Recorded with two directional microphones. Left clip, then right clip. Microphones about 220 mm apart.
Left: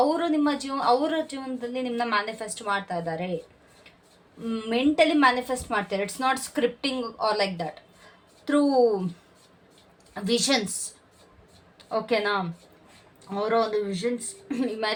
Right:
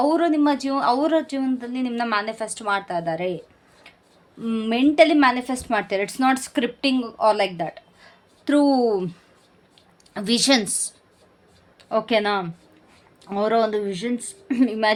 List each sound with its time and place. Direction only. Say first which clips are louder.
0.0 s speech: right 4 dB; 40° right (ahead or behind)
4.4 s speech: right 4 dB; 45° right (ahead or behind)
10.2 s speech: right 5 dB; 45° right (ahead or behind)
11.8 s a woman's voice: right 5 dB; 45° right (ahead or behind)